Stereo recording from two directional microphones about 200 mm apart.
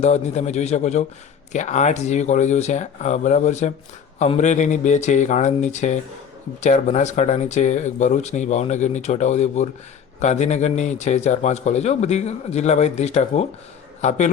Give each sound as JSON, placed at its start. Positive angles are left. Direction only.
{"t": 0.0, "sound": "a man's voice", "side_deg": 35}